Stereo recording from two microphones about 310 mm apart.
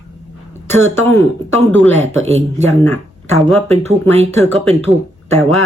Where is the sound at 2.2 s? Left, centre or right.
Right.